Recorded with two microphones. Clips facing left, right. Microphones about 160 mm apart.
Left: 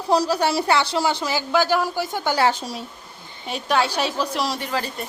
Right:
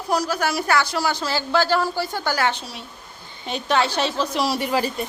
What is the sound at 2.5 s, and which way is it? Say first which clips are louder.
Speech: left 4 dB; 40° left (ahead or behind).